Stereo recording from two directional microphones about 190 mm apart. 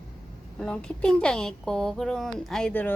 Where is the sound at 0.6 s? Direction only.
5° left (ahead or behind).